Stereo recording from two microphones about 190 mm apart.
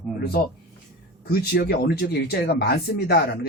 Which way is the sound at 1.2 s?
55° left (ahead or behind).